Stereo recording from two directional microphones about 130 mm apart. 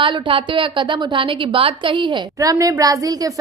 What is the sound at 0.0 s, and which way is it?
A woman's voice, 40° right (ahead or behind).